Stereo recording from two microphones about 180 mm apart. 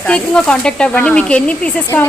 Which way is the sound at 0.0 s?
5° left (ahead or behind).